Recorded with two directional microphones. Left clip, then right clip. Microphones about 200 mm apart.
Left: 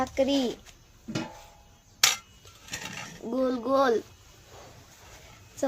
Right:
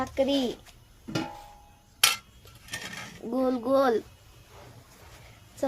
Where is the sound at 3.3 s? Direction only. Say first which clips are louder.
Right 1 dB; centre (ahead or behind).